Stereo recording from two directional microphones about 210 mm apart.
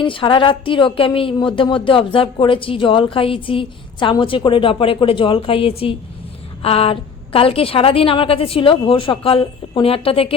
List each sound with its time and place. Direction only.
0.0 s speech: 25° left (ahead or behind)